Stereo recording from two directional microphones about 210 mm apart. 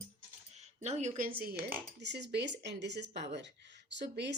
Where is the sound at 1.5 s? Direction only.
10° right (ahead or behind).